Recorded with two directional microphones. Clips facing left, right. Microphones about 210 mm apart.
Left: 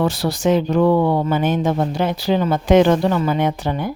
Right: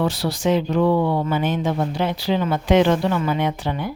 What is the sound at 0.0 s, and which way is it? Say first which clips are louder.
Speech: left 3 dB; 45° left (ahead or behind).